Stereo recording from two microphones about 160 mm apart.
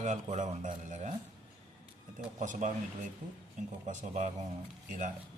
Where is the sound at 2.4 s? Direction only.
50° right (ahead or behind).